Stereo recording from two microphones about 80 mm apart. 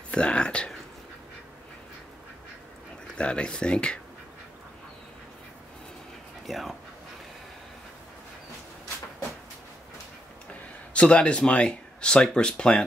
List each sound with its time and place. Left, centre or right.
0.1 s speech: centre
3.2 s speech: centre
6.4 s speech: centre
10.9 s speech: centre